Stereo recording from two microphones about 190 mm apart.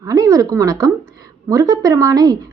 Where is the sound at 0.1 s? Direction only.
15° right (ahead or behind).